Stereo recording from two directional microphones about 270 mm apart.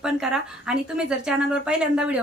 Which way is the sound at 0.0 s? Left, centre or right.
Centre.